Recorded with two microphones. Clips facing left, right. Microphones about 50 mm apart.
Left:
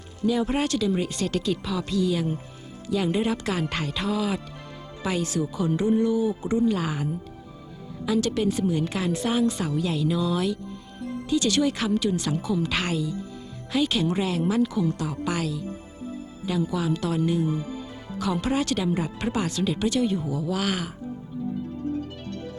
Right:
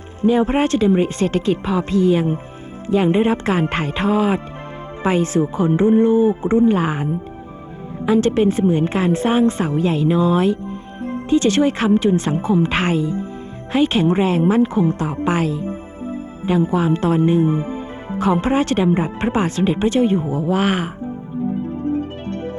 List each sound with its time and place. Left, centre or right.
0.2 s a woman's voice: right
21.4 s music: right